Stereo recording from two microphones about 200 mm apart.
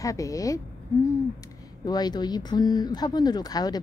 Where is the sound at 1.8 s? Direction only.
20° left (ahead or behind).